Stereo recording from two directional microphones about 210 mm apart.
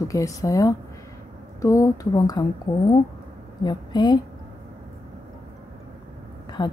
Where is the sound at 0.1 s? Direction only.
15° left (ahead or behind).